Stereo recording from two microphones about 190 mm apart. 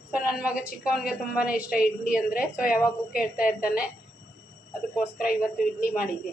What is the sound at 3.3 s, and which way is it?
Speech, 5° right (ahead or behind).